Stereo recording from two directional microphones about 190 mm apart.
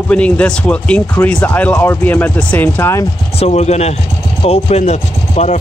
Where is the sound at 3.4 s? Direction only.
35° left (ahead or behind).